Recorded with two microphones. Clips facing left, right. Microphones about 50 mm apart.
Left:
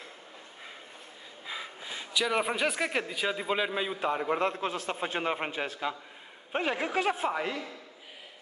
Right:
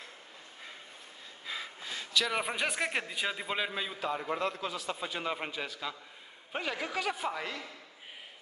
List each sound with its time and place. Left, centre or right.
1.4 s a sound: centre
2.3 s a man's voice: centre
4.0 s a man's voice: left